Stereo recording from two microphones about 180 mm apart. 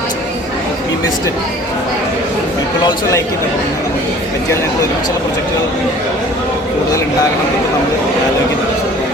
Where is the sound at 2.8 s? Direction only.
25° left (ahead or behind).